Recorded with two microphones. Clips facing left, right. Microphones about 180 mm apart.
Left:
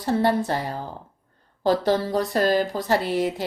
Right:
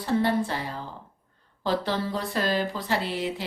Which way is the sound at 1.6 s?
40° left (ahead or behind).